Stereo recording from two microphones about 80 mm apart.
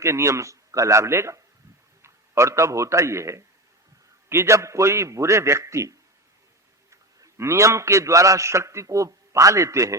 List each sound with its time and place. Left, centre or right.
0.0 s a man's voice: right
6.9 s a man's voice: right